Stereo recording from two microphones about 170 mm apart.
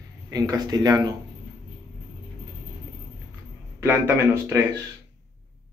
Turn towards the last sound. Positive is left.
turn(degrees=-15)  # may be behind; listen again after turning